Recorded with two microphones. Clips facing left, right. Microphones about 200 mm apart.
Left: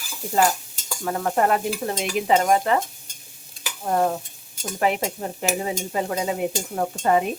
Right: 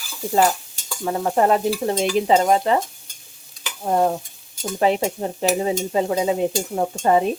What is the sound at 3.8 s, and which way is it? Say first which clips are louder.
Stir: right 3 dB; 15° right (ahead or behind).